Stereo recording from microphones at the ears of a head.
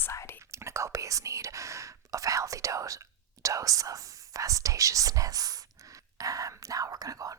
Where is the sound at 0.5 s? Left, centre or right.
Right.